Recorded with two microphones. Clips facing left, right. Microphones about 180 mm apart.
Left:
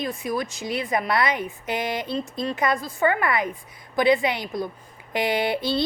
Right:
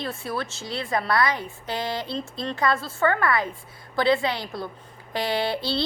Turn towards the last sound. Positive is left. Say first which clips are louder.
# left 2 dB
turn(degrees=20)  # may be behind; listen again after turning